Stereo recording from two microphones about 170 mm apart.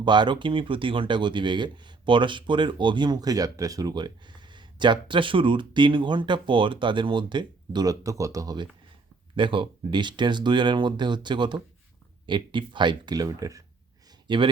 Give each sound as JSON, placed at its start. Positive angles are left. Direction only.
{"t": 0.0, "sound": "speech", "side_deg": -25}